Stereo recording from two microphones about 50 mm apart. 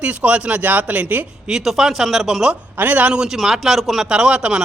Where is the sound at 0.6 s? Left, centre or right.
Right.